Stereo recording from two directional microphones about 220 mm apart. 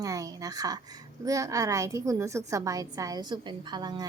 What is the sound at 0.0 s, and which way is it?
A woman's voice, 15° right (ahead or behind).